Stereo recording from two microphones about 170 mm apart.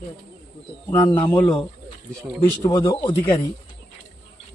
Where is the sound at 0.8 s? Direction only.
30° left (ahead or behind).